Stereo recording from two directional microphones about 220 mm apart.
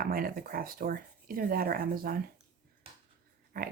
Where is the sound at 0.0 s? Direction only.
40° right (ahead or behind).